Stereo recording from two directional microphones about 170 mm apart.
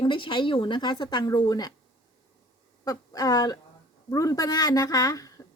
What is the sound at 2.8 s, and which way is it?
Speech, 20° left (ahead or behind).